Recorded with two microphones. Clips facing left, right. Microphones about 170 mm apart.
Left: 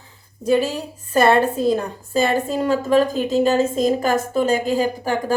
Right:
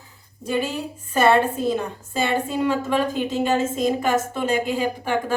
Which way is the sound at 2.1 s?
40° left (ahead or behind).